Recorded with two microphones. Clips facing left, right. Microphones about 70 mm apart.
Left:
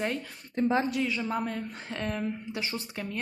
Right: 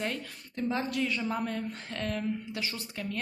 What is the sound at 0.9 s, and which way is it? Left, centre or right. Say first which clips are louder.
A woman's voice: left 1 dB; centre.